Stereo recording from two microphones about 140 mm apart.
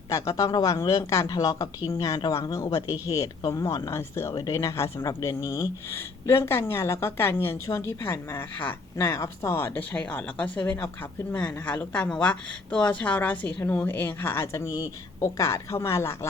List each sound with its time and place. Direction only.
0.1 s a woman's voice: 25° left (ahead or behind)